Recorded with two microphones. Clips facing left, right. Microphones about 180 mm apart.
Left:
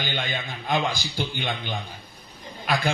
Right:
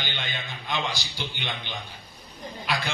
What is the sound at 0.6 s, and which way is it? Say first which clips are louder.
Speech: left 5 dB; 50° left (ahead or behind).